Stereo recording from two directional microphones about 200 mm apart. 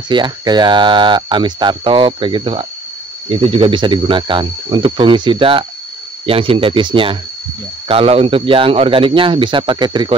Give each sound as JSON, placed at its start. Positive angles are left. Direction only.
{"t": 0.1, "sound": "speech", "side_deg": -20}